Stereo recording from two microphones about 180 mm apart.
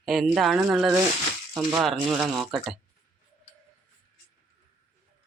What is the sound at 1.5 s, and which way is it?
Frying, 10° right (ahead or behind).